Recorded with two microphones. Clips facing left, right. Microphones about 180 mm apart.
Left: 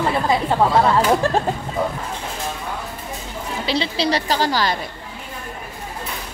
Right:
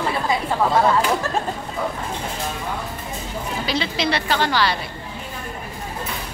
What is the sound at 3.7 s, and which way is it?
A woman's voice, 35° left (ahead or behind).